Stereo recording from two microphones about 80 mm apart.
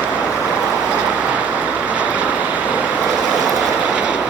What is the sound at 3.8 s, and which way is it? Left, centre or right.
Train, centre.